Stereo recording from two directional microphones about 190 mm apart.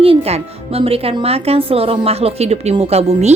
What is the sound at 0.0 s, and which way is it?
Speech, 30° right (ahead or behind).